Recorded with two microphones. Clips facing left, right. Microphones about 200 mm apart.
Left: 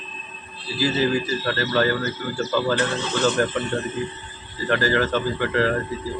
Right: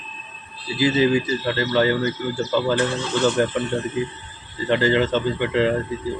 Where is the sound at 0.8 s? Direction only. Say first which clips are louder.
Right 3 dB; 15° right (ahead or behind).